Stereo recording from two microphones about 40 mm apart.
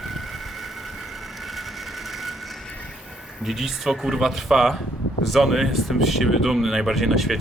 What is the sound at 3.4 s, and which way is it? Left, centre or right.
Speech, centre.